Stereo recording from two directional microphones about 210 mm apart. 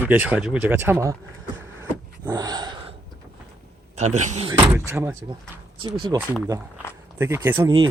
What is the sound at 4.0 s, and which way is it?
Speech, 35° right (ahead or behind).